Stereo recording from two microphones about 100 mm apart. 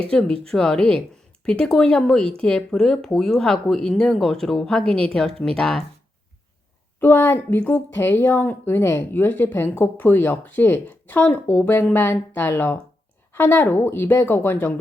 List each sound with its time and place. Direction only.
0.1 s speech: 5° left (ahead or behind)
7.0 s a woman's voice: 20° left (ahead or behind)